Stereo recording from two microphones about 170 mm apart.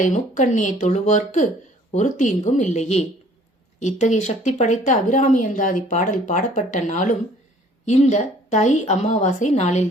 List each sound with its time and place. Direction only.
0.0 s speech: 45° left (ahead or behind)